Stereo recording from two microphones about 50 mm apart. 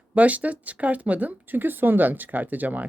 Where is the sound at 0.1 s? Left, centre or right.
Right.